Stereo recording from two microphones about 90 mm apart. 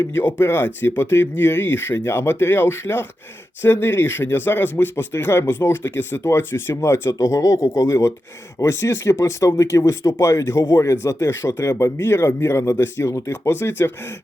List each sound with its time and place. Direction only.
0.0 s speech: 25° left (ahead or behind)